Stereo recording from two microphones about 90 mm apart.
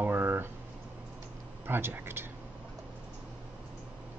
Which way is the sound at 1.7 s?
25° right (ahead or behind).